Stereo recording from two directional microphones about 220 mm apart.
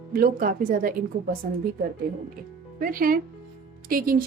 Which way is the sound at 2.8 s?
40° right (ahead or behind).